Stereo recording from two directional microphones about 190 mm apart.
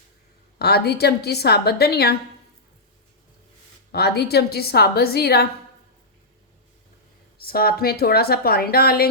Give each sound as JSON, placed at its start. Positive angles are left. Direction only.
{"t": 0.6, "sound": "a woman's voice", "side_deg": 55}
{"t": 3.9, "sound": "a woman's voice", "side_deg": 60}
{"t": 7.4, "sound": "a woman's voice", "side_deg": 55}